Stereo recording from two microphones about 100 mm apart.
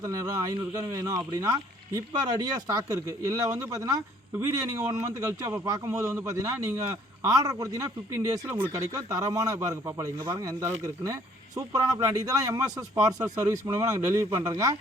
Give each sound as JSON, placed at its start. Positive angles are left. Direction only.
{"t": 0.0, "sound": "speech", "side_deg": -35}